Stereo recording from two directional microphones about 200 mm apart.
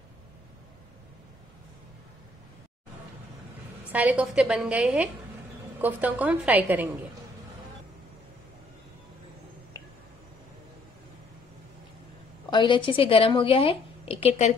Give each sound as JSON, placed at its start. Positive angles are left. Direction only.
{"t": 3.9, "sound": "a woman's voice", "side_deg": -5}
{"t": 12.4, "sound": "a woman's voice", "side_deg": 25}